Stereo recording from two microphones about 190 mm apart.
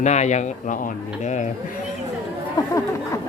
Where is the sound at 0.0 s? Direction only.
35° left (ahead or behind).